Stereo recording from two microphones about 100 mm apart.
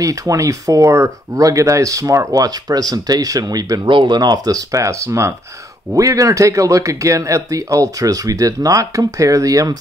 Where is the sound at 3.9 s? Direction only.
55° right (ahead or behind).